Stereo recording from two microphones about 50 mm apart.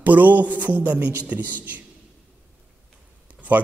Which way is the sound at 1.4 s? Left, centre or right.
Left.